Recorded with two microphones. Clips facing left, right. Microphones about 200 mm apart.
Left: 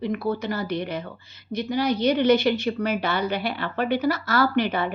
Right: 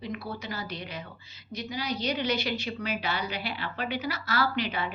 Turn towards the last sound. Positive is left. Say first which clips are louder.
# left 7 dB
turn(degrees=50)  # may be behind; listen again after turning